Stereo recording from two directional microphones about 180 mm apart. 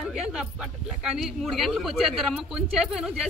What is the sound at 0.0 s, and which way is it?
Speech, 5° right (ahead or behind).